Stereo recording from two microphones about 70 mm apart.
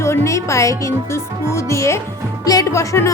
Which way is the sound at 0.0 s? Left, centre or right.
Left.